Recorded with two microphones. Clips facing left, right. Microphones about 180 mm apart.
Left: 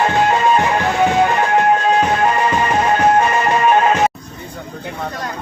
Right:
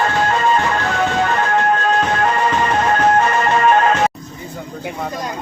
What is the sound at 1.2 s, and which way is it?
Music, 10° left (ahead or behind).